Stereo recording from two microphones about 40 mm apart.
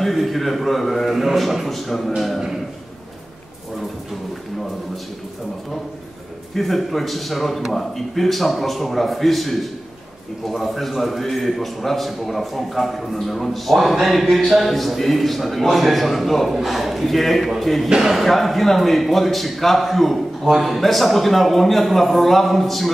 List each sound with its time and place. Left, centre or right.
0.0 s a man's voice: centre
6.5 s a man's voice: centre
17.8 s speech: centre
18.1 s a man's voice: centre